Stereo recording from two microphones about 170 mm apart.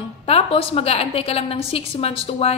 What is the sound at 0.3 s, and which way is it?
A woman's voice, 35° left (ahead or behind).